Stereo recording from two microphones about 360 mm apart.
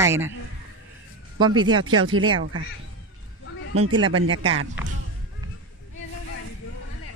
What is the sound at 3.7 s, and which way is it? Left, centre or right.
Speech, right.